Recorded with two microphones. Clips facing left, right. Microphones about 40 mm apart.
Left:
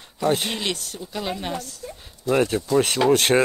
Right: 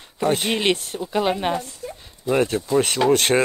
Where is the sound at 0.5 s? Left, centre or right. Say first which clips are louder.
Right 7 dB; right.